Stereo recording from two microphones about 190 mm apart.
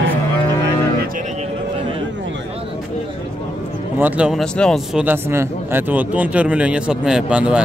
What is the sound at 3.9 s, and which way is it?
Speech, 10° right (ahead or behind).